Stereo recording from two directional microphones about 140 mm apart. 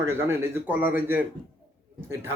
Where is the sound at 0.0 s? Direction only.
20° right (ahead or behind).